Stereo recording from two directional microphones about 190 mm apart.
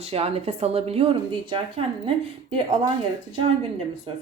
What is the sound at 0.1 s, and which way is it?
A woman's voice, 30° right (ahead or behind).